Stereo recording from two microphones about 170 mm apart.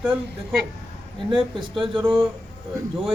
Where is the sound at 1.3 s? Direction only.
30° right (ahead or behind).